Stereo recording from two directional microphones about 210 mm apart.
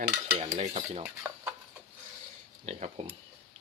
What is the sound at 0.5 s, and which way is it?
Speech, 30° right (ahead or behind).